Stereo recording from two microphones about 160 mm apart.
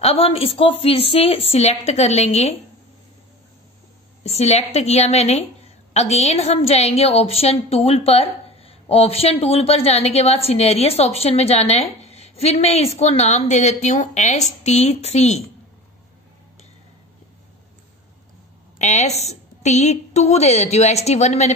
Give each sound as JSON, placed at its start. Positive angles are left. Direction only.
{"t": 0.0, "sound": "a woman's voice", "side_deg": 40}
{"t": 4.2, "sound": "a woman's voice", "side_deg": 40}
{"t": 18.8, "sound": "a woman's voice", "side_deg": 45}